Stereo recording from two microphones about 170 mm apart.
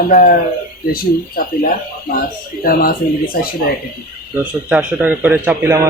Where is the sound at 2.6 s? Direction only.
60° left (ahead or behind).